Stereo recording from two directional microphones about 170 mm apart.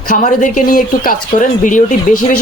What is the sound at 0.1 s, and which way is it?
A man's voice, 50° left (ahead or behind).